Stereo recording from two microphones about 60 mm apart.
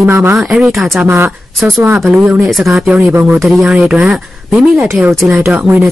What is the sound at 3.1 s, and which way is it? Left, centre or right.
Speech, right.